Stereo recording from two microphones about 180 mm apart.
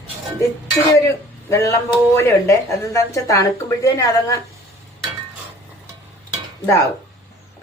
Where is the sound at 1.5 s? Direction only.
15° left (ahead or behind).